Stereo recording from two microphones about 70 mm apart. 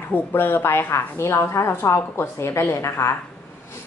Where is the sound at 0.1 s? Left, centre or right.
Left.